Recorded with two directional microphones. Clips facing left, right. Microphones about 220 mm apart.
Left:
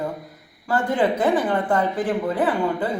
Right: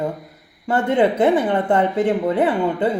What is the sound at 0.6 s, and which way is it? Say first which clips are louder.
A woman's voice: right 4 dB; 25° right (ahead or behind).